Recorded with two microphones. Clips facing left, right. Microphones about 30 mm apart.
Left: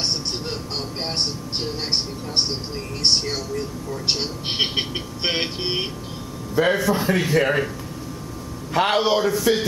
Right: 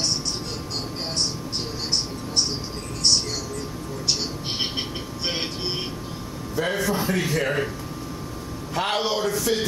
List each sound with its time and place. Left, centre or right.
3.0 s a man's voice: left
8.7 s a man's voice: centre